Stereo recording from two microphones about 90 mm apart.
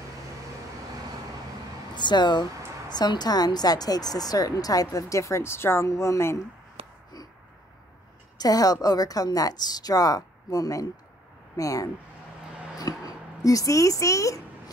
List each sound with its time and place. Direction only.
2.0 s a woman's voice: 55° left (ahead or behind); by 6.4 s 30° left (ahead or behind)
6.8 s a sound: 90° right
8.4 s a woman's voice: 45° left (ahead or behind)